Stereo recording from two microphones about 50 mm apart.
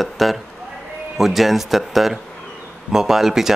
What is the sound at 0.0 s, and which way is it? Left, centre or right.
Speech, centre.